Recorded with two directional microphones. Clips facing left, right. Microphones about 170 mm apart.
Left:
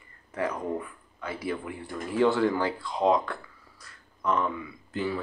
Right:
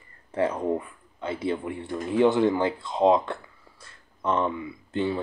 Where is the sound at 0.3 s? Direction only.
30° right (ahead or behind).